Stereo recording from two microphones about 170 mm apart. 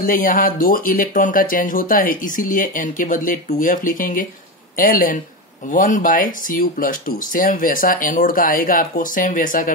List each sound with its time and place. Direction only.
0.0 s speech: 50° left (ahead or behind)